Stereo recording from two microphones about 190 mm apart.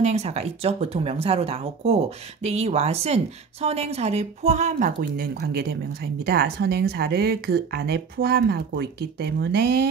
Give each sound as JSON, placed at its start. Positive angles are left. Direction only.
{"t": 0.0, "sound": "speech", "side_deg": -35}